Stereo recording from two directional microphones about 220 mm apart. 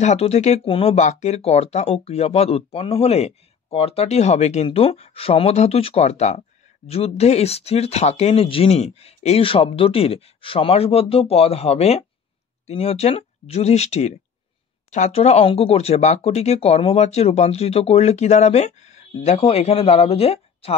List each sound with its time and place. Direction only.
0.0 s speech: 30° left (ahead or behind)